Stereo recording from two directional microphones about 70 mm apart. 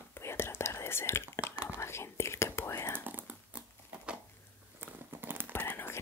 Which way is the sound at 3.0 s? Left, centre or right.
Right.